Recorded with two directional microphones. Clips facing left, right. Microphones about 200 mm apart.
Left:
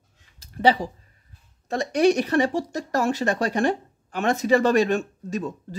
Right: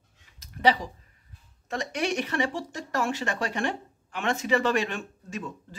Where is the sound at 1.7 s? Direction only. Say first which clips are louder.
Left 10 dB; 35° left (ahead or behind).